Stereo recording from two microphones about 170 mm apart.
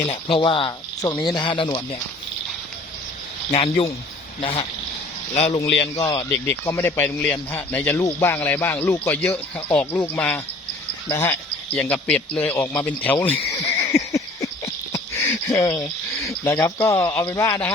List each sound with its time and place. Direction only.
0.1 s speech: 30° left (ahead or behind)
3.5 s speech: 35° left (ahead or behind)
6.0 s a man's voice: 20° left (ahead or behind)
13.7 s a sound: 20° left (ahead or behind)